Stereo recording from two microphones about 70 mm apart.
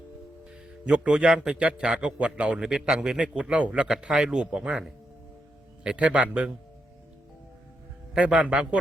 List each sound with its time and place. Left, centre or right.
0.9 s a man's voice: centre
8.1 s a man's voice: centre